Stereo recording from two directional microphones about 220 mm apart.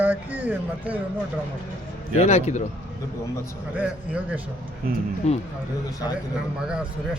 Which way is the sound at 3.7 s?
5° right (ahead or behind).